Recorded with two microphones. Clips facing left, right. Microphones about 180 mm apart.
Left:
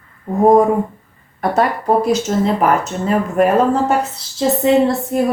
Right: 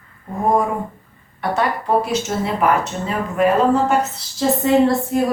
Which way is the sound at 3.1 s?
50° left (ahead or behind).